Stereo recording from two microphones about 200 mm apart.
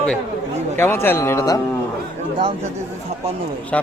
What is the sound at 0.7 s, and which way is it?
Speech, 10° left (ahead or behind).